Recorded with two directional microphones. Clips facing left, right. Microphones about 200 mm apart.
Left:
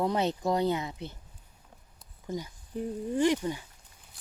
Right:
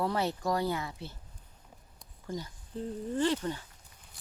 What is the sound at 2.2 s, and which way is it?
Speech, 15° left (ahead or behind).